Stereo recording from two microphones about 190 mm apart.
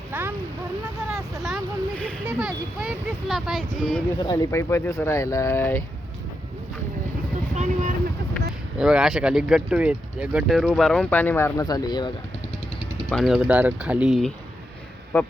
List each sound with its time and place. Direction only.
0.1 s a sound: 10° right (ahead or behind)
1.4 s vehicle: centre (ahead or behind)
2.2 s speech: 5° right (ahead or behind)
4.2 s speech: 20° left (ahead or behind)
7.5 s vehicle: 40° right (ahead or behind)
8.8 s speech: 5° right (ahead or behind); by 12.1 s 20° left (ahead or behind)
13.1 s speech: centre (ahead or behind)